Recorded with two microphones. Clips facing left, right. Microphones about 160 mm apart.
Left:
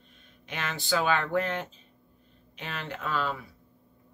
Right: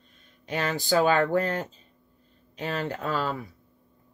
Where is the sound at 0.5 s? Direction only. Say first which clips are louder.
Right 5 dB; 40° right (ahead or behind).